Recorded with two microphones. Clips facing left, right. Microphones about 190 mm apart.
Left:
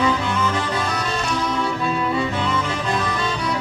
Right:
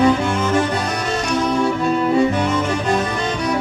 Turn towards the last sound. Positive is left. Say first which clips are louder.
# right 3 dB
turn(degrees=-45)  # may be behind; listen again after turning